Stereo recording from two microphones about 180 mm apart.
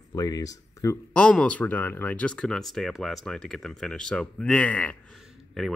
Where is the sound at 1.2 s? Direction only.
5° left (ahead or behind).